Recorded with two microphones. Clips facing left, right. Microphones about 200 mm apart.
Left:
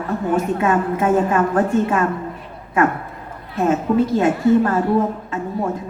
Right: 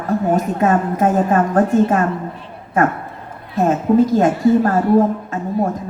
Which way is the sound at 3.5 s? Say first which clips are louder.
Right 3 dB; 40° right (ahead or behind).